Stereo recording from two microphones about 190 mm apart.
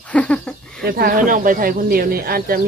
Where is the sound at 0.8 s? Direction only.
50° right (ahead or behind).